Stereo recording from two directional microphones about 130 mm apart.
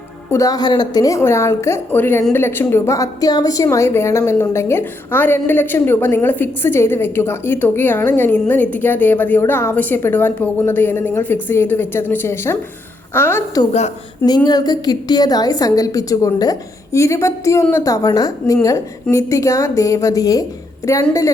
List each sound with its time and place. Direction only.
0.3 s a woman's voice: 25° left (ahead or behind)
14.3 s a woman's voice: 30° left (ahead or behind)